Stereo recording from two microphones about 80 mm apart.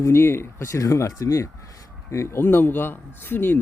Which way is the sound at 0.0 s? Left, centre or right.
Left.